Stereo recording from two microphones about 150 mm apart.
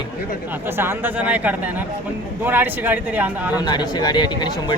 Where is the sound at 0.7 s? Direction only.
15° right (ahead or behind).